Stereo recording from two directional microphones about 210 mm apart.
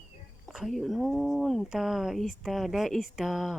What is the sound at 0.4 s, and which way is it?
Speech, centre (ahead or behind).